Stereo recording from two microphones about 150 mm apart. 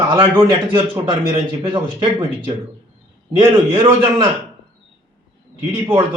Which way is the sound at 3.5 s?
35° right (ahead or behind).